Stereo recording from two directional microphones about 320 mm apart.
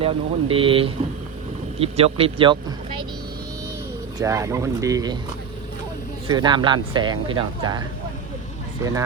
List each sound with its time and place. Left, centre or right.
0.0 s speech: centre
4.2 s speech: centre
6.2 s speech: centre